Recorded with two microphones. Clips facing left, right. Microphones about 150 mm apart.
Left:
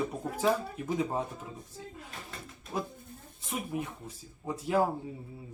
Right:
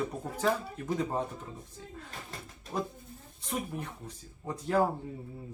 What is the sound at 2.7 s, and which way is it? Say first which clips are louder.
Speech: right 1 dB; 5° left (ahead or behind).